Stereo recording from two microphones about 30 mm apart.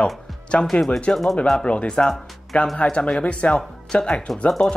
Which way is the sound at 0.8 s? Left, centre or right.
Left.